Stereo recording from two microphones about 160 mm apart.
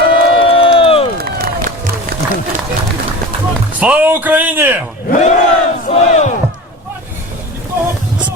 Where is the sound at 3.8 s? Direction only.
10° right (ahead or behind).